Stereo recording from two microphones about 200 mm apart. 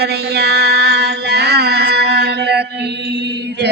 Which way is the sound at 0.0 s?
55° right (ahead or behind).